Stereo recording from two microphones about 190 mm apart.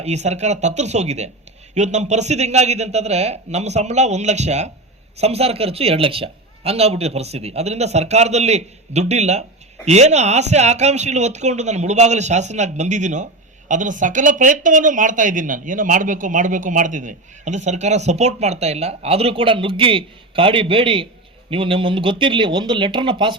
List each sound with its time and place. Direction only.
0.0 s speech: 35° right (ahead or behind)